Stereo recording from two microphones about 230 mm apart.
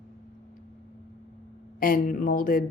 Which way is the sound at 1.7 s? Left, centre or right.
Left.